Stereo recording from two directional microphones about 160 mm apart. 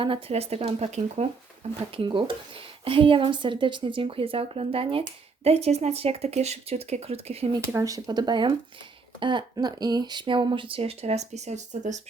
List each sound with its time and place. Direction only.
0.0 s a woman's voice: 35° right (ahead or behind)
1.9 s a woman's voice: 35° right (ahead or behind)
7.7 s a woman's voice: 20° right (ahead or behind); by 11.9 s 50° right (ahead or behind)